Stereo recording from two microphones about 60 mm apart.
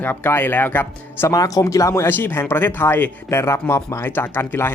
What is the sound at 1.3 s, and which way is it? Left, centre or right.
Speech, left.